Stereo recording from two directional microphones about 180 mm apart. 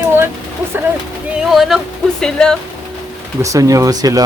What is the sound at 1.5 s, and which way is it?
Speech, centre (ahead or behind).